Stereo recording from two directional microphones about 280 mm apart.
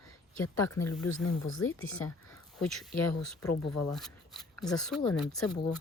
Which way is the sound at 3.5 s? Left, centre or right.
Left.